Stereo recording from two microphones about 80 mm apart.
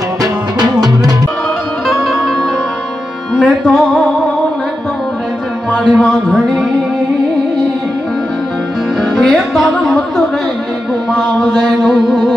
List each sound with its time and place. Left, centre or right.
0.2 s music: right
1.9 s music: centre
3.3 s music: centre
5.9 s speech: centre
9.1 s music: centre
11.1 s mantra: centre